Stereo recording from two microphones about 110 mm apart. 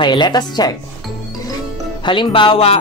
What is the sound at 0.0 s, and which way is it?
Speech, 45° left (ahead or behind).